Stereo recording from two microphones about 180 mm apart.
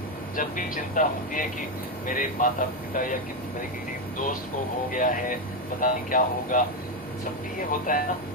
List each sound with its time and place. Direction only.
0.3 s speech: 45° left (ahead or behind)
4.9 s speech: 45° left (ahead or behind)
7.7 s speech: 50° left (ahead or behind)